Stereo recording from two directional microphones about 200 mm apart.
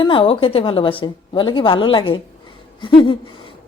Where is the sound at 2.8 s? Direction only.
25° left (ahead or behind).